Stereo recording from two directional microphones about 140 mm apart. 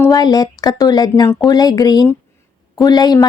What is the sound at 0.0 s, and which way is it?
A woman's voice, 25° left (ahead or behind).